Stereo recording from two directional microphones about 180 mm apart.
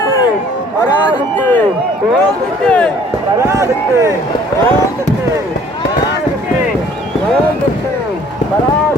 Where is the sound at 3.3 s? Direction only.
15° right (ahead or behind).